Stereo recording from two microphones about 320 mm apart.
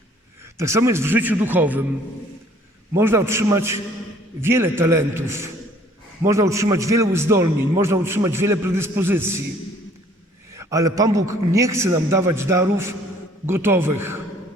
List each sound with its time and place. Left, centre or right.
0.5 s a man's voice: centre
2.9 s a man's voice: centre
10.5 s a man's voice: centre